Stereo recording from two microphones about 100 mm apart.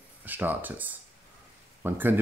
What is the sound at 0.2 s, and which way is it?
Speech, 20° right (ahead or behind).